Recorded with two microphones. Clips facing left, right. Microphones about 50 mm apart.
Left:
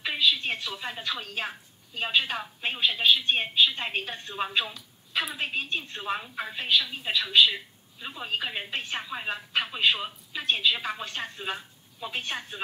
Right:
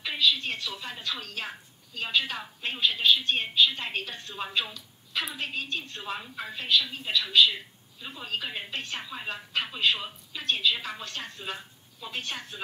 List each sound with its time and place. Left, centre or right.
0.0 s a woman's voice: centre